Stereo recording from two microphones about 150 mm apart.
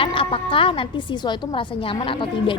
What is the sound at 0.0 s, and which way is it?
A woman's voice, 35° left (ahead or behind).